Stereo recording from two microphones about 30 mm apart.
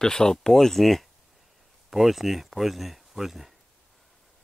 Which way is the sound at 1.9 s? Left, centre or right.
Centre.